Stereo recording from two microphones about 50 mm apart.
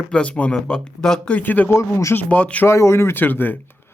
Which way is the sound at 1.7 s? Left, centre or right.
Left.